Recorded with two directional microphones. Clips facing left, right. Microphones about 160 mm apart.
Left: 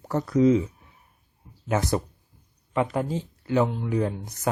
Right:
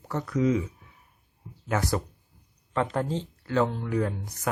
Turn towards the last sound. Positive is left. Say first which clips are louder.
# left 3 dB
turn(degrees=25)  # may be behind; listen again after turning